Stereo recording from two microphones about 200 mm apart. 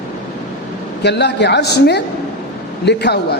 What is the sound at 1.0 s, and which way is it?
A woman's voice, 55° left (ahead or behind).